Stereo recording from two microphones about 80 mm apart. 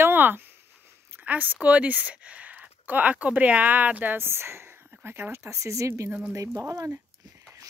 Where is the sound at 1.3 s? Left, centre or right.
Right.